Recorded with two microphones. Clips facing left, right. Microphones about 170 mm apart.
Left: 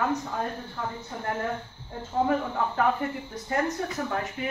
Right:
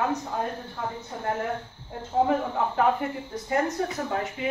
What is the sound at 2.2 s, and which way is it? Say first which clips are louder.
Speech: right 1 dB; 15° right (ahead or behind).